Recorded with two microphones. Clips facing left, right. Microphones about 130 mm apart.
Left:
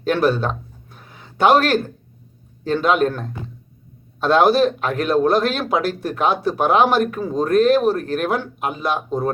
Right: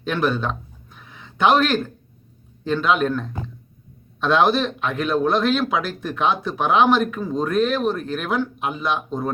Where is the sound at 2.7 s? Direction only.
45° left (ahead or behind).